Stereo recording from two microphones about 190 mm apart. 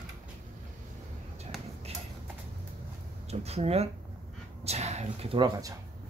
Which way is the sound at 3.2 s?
35° right (ahead or behind).